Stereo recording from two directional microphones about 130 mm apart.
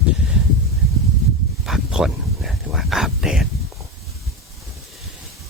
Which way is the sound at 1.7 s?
5° right (ahead or behind).